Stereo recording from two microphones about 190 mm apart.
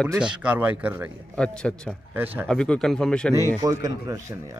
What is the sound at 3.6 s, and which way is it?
Speech, 20° right (ahead or behind).